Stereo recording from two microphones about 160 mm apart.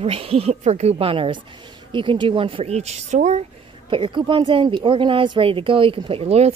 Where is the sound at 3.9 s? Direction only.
30° right (ahead or behind).